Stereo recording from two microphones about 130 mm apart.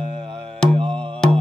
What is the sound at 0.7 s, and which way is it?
Music, 45° right (ahead or behind).